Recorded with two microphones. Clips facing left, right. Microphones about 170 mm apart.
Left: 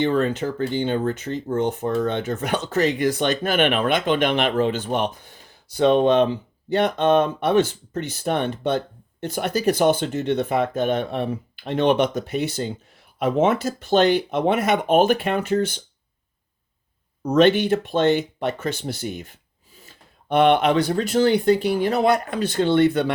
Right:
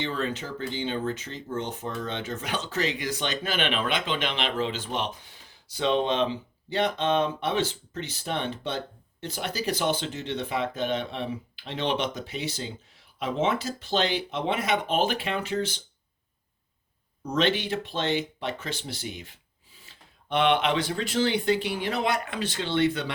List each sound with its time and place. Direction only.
0.0 s speech: 55° left (ahead or behind)
17.2 s speech: 50° left (ahead or behind)